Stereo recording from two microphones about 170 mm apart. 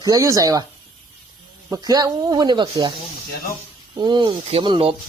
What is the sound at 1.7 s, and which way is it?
Speech, 20° right (ahead or behind).